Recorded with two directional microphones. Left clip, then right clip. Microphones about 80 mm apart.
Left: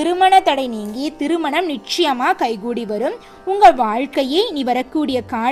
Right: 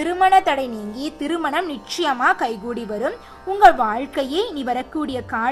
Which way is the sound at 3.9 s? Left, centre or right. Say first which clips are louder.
Left 4 dB; left.